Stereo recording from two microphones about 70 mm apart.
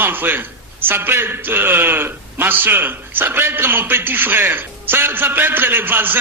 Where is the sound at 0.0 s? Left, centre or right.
Right.